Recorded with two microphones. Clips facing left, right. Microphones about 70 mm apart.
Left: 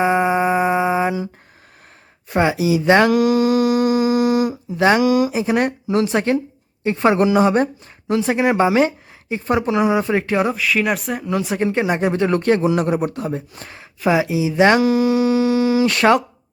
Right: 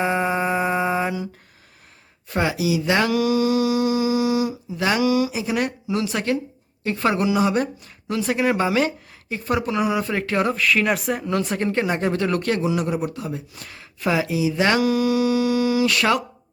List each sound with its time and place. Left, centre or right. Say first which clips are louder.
0.0 s mantra: left 5 dB; centre
2.3 s a sound: left 5 dB; left
4.8 s speech: left 5 dB; left
7.2 s a woman's voice: left 5 dB; left
12.7 s speech: left 5 dB; left